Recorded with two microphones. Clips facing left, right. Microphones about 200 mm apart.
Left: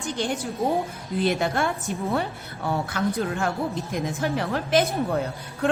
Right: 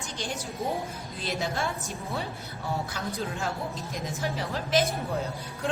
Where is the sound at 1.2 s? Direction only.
55° left (ahead or behind).